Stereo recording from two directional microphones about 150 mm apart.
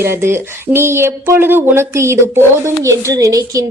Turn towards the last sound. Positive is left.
turn(degrees=-25)  # may be behind; listen again after turning